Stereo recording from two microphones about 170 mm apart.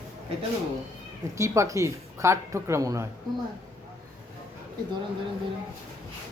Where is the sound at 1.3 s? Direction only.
15° right (ahead or behind).